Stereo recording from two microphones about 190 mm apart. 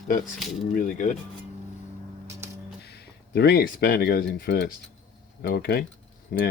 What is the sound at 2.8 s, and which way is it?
Speech, 60° left (ahead or behind).